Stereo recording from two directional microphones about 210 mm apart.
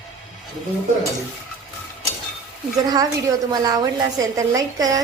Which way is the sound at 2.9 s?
20° right (ahead or behind).